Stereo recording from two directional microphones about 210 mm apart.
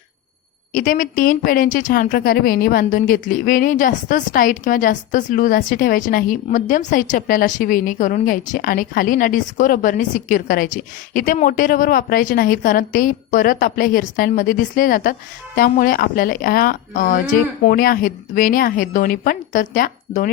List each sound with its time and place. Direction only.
0.7 s a woman's voice: 40° left (ahead or behind)